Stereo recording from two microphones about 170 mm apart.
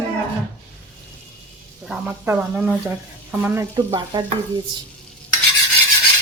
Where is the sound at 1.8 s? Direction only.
5° right (ahead or behind); by 4.2 s 25° right (ahead or behind).